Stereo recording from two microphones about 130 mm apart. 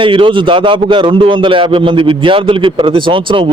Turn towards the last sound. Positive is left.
turn(degrees=-40)  # may be behind; listen again after turning